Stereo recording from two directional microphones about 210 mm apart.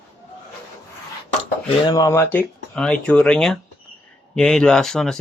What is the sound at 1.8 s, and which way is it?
Speech, 15° left (ahead or behind).